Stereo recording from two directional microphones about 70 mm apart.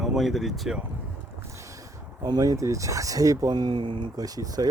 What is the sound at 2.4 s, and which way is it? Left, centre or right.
Speech, right.